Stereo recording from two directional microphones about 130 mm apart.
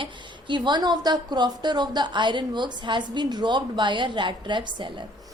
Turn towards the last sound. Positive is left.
turn(degrees=-35)  # may be behind; listen again after turning